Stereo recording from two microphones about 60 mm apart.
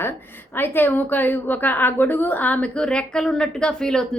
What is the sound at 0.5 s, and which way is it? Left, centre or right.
A woman's voice, left.